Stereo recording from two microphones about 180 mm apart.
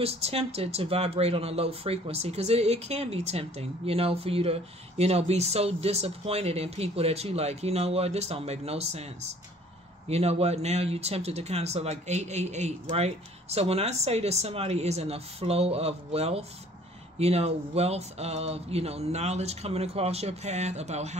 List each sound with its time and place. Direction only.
0.0 s speech: 35° right (ahead or behind)